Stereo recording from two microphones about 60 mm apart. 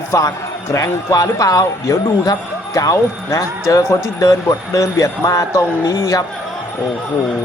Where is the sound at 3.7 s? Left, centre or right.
Left.